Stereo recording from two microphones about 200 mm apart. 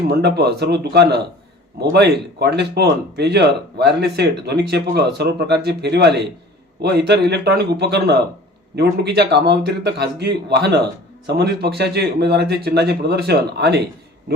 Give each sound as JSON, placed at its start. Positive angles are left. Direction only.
{"t": 0.1, "sound": "speech", "side_deg": -55}